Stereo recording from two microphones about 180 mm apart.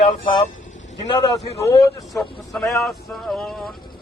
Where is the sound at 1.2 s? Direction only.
20° left (ahead or behind).